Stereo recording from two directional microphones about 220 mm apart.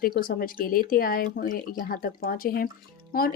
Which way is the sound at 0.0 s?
40° left (ahead or behind).